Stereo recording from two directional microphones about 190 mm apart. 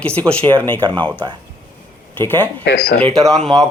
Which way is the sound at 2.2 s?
10° left (ahead or behind).